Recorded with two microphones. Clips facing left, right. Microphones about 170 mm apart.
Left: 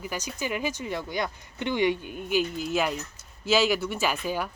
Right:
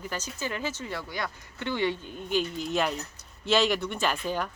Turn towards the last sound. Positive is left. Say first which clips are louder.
# left 1 dB
turn(degrees=10)  # may be behind; listen again after turning